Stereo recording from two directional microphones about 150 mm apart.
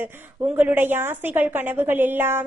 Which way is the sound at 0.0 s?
10° right (ahead or behind).